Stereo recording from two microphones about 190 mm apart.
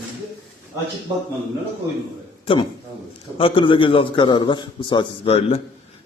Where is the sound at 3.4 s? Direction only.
25° left (ahead or behind).